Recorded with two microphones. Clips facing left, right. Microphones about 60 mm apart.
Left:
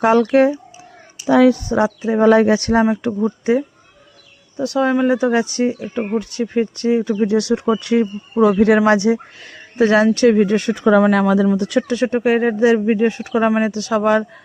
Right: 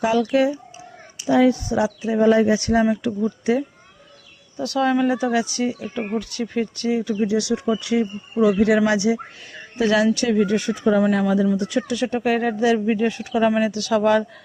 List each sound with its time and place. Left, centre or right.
0.0 s speech: left
1.6 s speech: left
2.2 s speech: left
2.8 s speech: left
10.2 s speech: left
11.9 s speech: left